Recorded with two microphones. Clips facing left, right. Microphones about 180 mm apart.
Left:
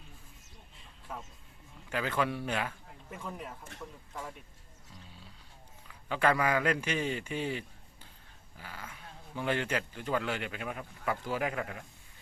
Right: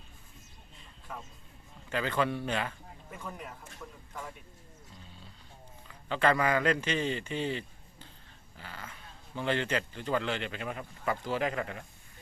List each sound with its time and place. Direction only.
1.9 s speech: 5° left (ahead or behind)
5.9 s speech: 5° left (ahead or behind)